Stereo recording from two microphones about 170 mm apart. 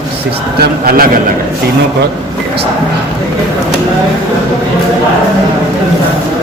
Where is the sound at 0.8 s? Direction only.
60° right (ahead or behind).